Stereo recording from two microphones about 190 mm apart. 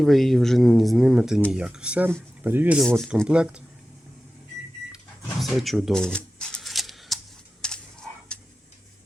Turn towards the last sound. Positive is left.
turn(degrees=5)  # may be behind; listen again after turning